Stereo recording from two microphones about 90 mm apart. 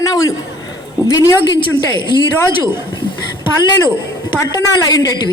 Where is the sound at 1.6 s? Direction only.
60° left (ahead or behind).